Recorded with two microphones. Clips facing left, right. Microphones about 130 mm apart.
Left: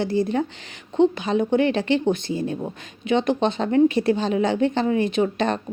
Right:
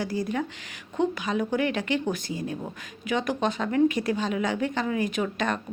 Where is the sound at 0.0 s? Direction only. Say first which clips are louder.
Left 6 dB; 25° left (ahead or behind).